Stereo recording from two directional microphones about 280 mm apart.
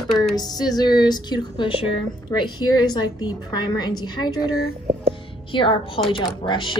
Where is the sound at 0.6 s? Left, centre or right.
Centre.